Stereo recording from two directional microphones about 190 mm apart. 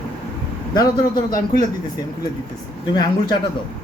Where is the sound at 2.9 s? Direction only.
20° left (ahead or behind).